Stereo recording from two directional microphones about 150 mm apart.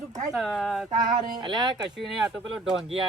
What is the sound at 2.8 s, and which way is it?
Speech, 40° right (ahead or behind).